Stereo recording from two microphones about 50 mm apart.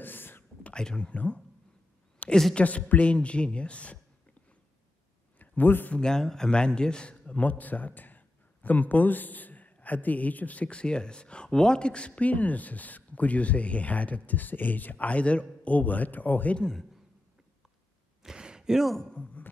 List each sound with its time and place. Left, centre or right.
0.0 s whispering: left
0.7 s speech: centre
2.2 s a sound: left
2.5 s speech: left
5.4 s speech: left
5.9 s a man's voice: centre; by 16.5 s left
16.5 s a man's voice: centre
18.2 s a sound: centre
19.1 s music: left